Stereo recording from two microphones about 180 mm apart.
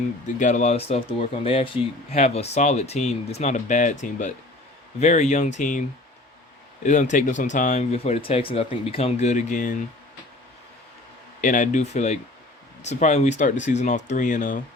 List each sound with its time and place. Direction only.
0.3 s speech: 45° left (ahead or behind)
4.9 s speech: 40° left (ahead or behind)
6.8 s speech: 45° left (ahead or behind)
11.3 s speech: 45° left (ahead or behind)